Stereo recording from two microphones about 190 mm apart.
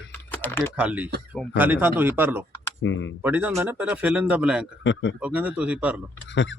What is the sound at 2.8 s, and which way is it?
Speech, 75° left (ahead or behind).